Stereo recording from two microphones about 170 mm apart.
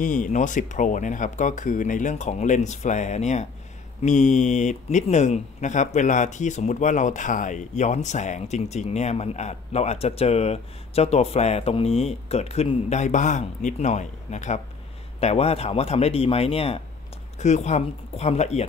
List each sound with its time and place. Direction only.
0.0 s a man's voice: 50° left (ahead or behind)